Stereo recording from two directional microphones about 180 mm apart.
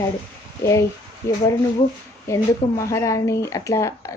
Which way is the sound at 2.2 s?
15° left (ahead or behind).